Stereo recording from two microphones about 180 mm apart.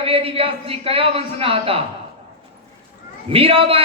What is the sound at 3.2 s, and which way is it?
Speech, 30° right (ahead or behind).